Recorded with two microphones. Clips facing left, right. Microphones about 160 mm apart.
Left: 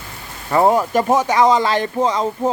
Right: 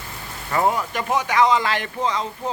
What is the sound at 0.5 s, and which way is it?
Speech, 40° left (ahead or behind).